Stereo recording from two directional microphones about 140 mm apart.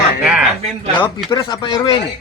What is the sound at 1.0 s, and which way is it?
Speech, 30° left (ahead or behind).